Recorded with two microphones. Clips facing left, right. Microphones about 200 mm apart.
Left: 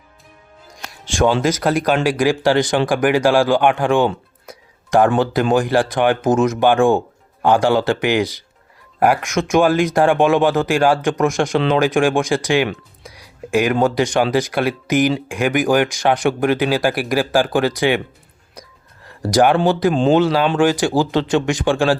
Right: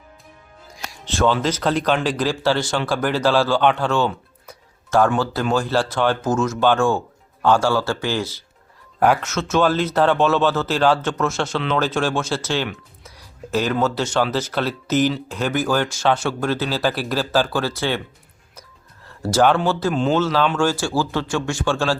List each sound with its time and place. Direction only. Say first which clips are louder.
1.0 s speech: left 3 dB; 15° left (ahead or behind)
13.0 s a sound: left 4 dB; 15° left (ahead or behind)
13.8 s speech: left 4 dB; 15° left (ahead or behind)
19.3 s speech: left 3 dB; 15° left (ahead or behind)